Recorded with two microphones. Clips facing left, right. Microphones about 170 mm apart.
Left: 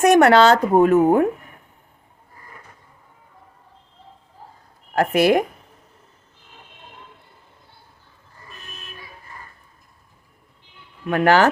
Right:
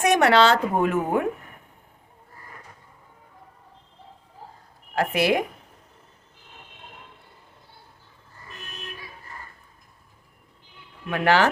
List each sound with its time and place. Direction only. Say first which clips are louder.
0.0 s speech: left 5 dB; 50° left (ahead or behind)
4.9 s speech: left 5 dB; 45° left (ahead or behind)
11.1 s speech: left 4 dB; 45° left (ahead or behind)